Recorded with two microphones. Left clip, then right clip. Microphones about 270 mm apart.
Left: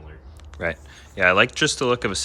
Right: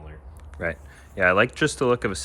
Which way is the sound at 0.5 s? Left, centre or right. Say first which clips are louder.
Left 2 dB; centre.